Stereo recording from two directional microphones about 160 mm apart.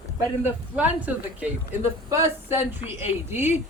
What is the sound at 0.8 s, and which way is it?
Speech, 10° right (ahead or behind).